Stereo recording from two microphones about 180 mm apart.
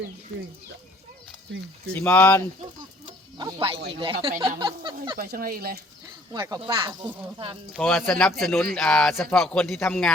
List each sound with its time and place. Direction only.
1.9 s speech: 10° left (ahead or behind)
3.1 s snake: 25° right (ahead or behind)
4.0 s speech: 30° right (ahead or behind)
5.1 s speech: 55° right (ahead or behind)
6.6 s speech: 30° right (ahead or behind)
7.7 s speech: 5° left (ahead or behind)